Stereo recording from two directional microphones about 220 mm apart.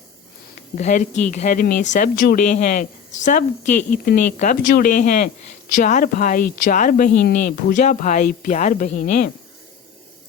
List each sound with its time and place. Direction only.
0.8 s speech: 35° left (ahead or behind)
3.8 s speech: 40° left (ahead or behind)